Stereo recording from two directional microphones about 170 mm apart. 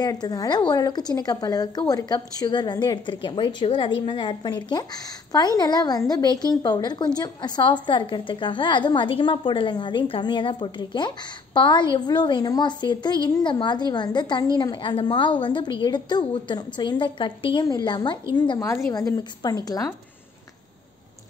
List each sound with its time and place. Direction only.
0.0 s a woman's voice: 25° left (ahead or behind)